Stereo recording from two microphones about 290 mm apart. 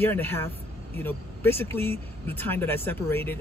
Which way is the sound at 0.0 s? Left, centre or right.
Centre.